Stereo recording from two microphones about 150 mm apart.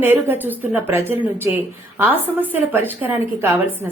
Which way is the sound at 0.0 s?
15° right (ahead or behind).